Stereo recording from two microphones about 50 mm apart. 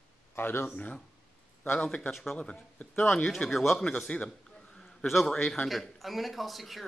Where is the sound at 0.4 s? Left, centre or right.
Left.